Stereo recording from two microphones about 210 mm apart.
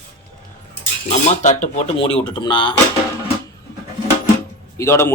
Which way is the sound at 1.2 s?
35° left (ahead or behind).